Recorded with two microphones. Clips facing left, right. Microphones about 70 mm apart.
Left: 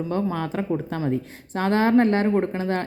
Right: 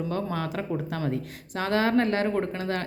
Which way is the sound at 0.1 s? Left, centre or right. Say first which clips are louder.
Left 4 dB; left.